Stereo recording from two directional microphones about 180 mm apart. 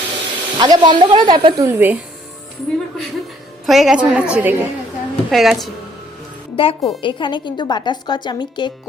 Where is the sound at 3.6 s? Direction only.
Centre (ahead or behind).